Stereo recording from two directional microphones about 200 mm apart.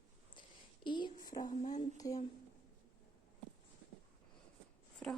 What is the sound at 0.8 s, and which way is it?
Speech, 25° left (ahead or behind).